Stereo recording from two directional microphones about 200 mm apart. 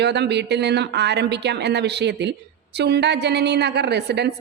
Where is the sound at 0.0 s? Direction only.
55° right (ahead or behind).